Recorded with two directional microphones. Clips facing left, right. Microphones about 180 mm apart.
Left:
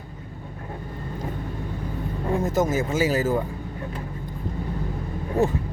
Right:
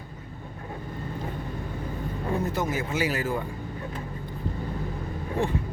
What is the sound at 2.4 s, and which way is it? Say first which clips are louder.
Speech: left 5 dB; 45° left (ahead or behind).